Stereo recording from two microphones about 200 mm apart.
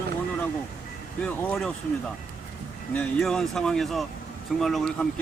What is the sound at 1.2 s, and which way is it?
Speech, 5° left (ahead or behind).